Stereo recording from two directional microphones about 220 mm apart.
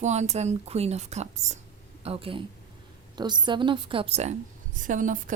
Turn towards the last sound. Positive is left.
turn(degrees=-35)  # may be behind; listen again after turning